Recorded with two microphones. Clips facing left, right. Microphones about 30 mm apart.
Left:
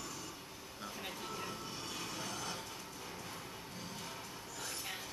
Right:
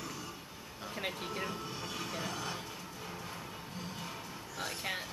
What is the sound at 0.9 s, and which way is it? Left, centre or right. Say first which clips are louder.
Speech: right 7 dB; right.